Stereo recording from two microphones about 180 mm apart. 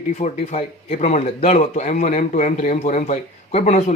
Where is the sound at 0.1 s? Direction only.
35° left (ahead or behind).